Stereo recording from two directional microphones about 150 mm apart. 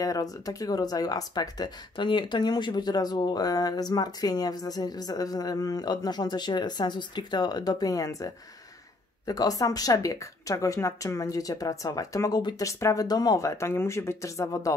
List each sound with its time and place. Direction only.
0.0 s speech: 25° left (ahead or behind)